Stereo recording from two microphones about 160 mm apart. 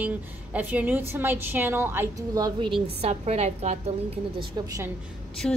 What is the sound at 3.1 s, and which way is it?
Speech, 40° right (ahead or behind).